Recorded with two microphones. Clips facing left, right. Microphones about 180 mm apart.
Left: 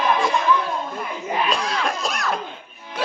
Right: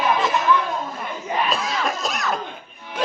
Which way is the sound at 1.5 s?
Centre (ahead or behind).